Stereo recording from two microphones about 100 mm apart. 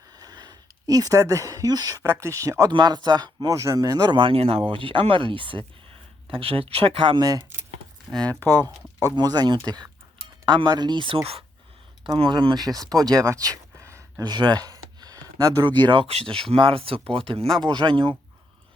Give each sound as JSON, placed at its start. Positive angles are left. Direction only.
{"t": 0.2, "sound": "speech", "side_deg": -45}
{"t": 2.6, "sound": "speech", "side_deg": -45}
{"t": 4.2, "sound": "speech", "side_deg": -75}
{"t": 6.2, "sound": "speech", "side_deg": -70}
{"t": 8.1, "sound": "speech", "side_deg": 10}
{"t": 8.4, "sound": "speech", "side_deg": -35}
{"t": 14.2, "sound": "a sound", "side_deg": -45}
{"t": 15.6, "sound": "speech", "side_deg": -50}
{"t": 17.6, "sound": "speech", "side_deg": -45}